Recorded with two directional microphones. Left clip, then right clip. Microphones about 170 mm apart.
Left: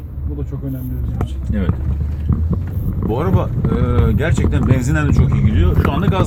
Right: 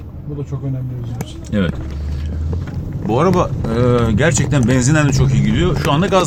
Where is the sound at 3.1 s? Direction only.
40° right (ahead or behind).